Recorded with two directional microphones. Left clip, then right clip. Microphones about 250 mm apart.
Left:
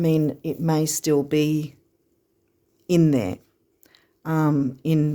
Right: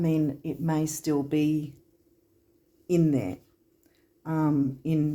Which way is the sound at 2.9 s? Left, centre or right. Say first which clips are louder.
Left 5 dB; left.